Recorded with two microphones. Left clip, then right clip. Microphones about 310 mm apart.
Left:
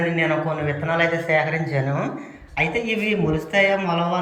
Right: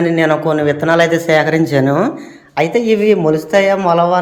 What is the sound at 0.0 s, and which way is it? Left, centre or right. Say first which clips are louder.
A man's voice: right 8 dB; centre.